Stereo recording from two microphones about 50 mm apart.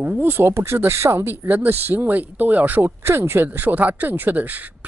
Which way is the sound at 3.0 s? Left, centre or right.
Right.